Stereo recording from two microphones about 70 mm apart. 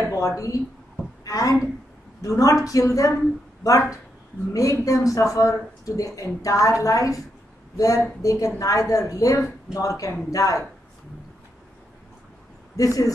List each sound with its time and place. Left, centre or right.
0.1 s a woman's voice: left
4.5 s a woman's voice: left
12.7 s a woman's voice: left